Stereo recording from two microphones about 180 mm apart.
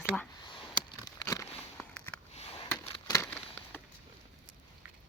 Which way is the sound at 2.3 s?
35° left (ahead or behind).